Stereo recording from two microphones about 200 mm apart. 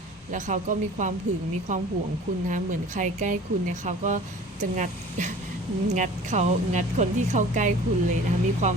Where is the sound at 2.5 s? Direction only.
40° right (ahead or behind).